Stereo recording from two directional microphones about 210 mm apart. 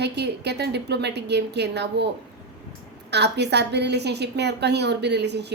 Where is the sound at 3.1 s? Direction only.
55° right (ahead or behind).